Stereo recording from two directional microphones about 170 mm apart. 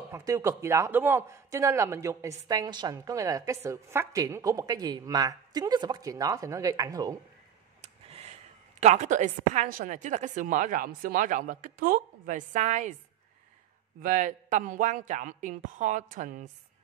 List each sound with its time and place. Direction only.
0.1 s speech: 20° right (ahead or behind)
7.8 s a woman's voice: 40° right (ahead or behind)
14.0 s speech: 50° right (ahead or behind)